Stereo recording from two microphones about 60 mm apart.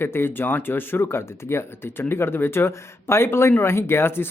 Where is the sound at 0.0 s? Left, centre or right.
Left.